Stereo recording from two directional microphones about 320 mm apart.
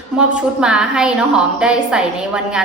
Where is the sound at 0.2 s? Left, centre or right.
Centre.